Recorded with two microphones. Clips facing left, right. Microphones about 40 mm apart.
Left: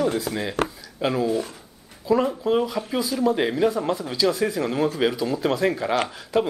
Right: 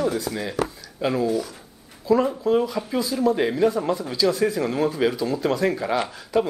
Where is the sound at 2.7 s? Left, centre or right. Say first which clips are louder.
Even; centre.